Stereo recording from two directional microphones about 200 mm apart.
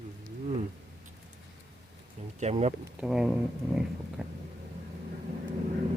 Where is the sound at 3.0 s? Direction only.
5° right (ahead or behind).